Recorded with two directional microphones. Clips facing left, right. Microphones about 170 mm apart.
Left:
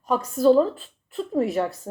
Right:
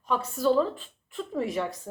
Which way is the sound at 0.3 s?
40° left (ahead or behind).